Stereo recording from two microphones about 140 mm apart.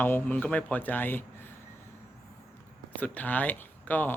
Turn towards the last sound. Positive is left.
turn(degrees=10)  # may be behind; listen again after turning